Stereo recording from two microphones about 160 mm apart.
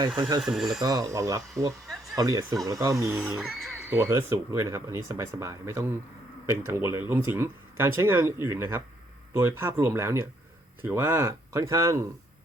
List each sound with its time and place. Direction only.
0.2 s speech: 30° right (ahead or behind)
0.4 s speech: centre (ahead or behind)
0.8 s speech: 25° right (ahead or behind)